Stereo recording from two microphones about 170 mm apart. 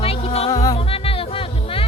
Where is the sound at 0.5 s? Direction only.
20° left (ahead or behind).